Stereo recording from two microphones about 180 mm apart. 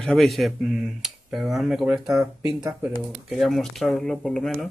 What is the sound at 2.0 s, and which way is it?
Speech, 20° right (ahead or behind).